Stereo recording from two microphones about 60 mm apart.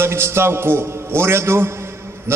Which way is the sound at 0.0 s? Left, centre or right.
Right.